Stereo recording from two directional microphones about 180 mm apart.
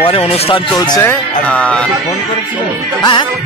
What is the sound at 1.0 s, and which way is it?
Speech, 10° left (ahead or behind).